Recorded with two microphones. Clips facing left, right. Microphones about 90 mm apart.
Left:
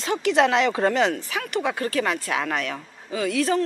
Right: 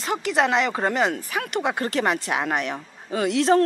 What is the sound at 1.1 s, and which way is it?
A woman's voice, 25° right (ahead or behind).